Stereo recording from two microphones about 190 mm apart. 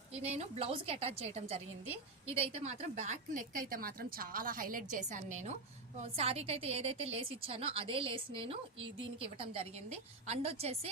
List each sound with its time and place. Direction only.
0.1 s a woman's voice: 35° right (ahead or behind)